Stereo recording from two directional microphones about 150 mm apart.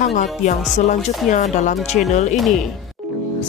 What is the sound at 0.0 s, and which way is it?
Speech, 55° left (ahead or behind).